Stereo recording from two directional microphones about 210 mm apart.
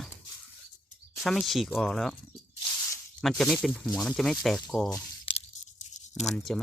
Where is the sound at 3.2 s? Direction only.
Centre (ahead or behind).